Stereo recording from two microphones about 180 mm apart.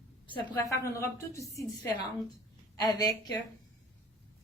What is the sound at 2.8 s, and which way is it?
Speech, 20° left (ahead or behind).